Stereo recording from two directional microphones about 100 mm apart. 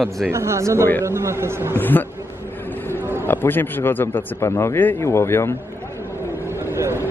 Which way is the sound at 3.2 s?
20° left (ahead or behind).